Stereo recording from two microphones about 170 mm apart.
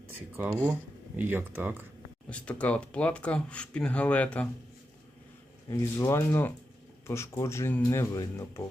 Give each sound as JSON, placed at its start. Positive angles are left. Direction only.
{"t": 0.1, "sound": "speech", "side_deg": -10}
{"t": 2.3, "sound": "speech", "side_deg": 5}
{"t": 5.6, "sound": "speech", "side_deg": 20}